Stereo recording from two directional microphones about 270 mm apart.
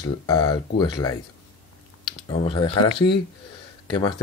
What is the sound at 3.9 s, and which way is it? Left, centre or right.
Speech, centre.